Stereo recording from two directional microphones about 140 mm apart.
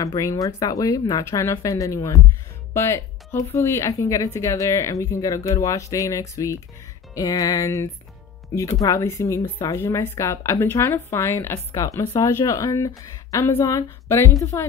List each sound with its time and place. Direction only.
0.0 s a woman's voice: 25° left (ahead or behind)